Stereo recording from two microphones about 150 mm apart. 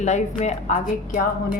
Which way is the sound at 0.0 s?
50° left (ahead or behind).